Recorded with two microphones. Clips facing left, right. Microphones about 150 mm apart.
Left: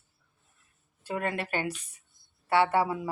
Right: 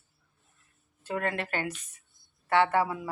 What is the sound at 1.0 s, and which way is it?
Speech, 20° left (ahead or behind).